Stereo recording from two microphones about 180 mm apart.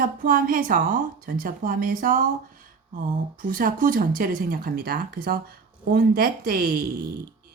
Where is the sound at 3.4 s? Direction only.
50° right (ahead or behind).